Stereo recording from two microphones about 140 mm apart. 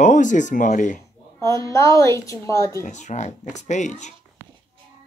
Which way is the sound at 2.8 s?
60° left (ahead or behind).